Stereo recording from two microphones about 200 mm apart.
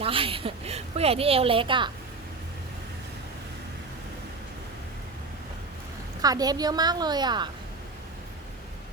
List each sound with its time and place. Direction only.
0.0 s a woman's voice: 25° right (ahead or behind)
6.2 s a woman's voice: 20° right (ahead or behind)